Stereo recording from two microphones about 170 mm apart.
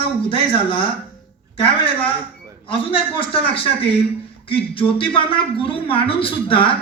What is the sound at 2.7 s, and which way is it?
A man's voice, 30° left (ahead or behind).